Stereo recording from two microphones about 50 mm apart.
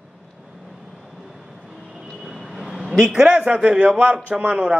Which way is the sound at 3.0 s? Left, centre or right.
Centre.